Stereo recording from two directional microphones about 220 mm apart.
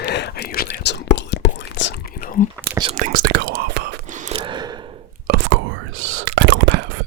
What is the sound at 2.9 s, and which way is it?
Whispering, 40° right (ahead or behind).